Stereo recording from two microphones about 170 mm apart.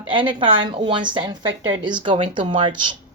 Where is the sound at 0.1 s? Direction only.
30° right (ahead or behind).